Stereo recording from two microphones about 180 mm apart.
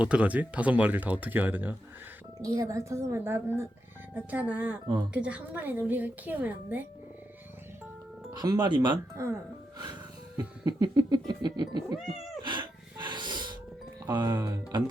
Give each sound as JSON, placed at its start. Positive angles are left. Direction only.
{"t": 0.0, "sound": "speech", "side_deg": -5}
{"t": 8.4, "sound": "cat", "side_deg": -25}
{"t": 9.7, "sound": "music", "side_deg": -25}
{"t": 10.7, "sound": "cat", "side_deg": -20}
{"t": 12.4, "sound": "a sound", "side_deg": -25}
{"t": 14.2, "sound": "cat", "side_deg": -25}